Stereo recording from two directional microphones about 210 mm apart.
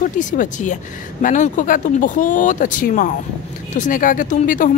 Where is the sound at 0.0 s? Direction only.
40° left (ahead or behind).